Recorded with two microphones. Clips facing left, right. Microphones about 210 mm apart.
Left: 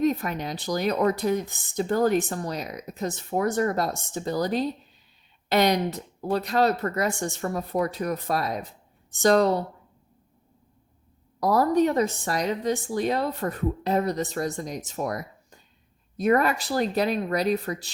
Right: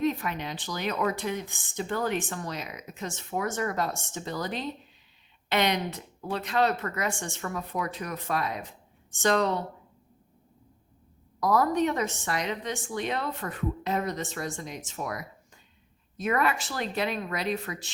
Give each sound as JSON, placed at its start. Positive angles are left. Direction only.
{"t": 0.0, "sound": "speech", "side_deg": 40}
{"t": 11.3, "sound": "speech", "side_deg": 35}